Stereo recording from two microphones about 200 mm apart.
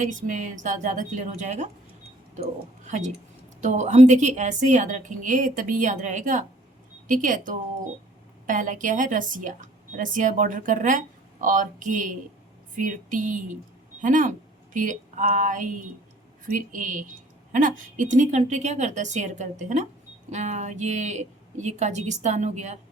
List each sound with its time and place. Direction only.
0.0 s a woman's voice: 40° right (ahead or behind)